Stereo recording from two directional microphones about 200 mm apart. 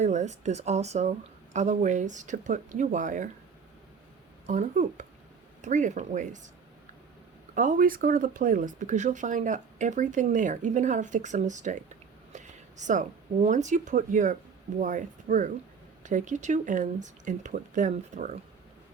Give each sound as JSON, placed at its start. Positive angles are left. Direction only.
{"t": 0.0, "sound": "speech", "side_deg": -35}
{"t": 4.4, "sound": "speech", "side_deg": -35}
{"t": 7.5, "sound": "speech", "side_deg": -40}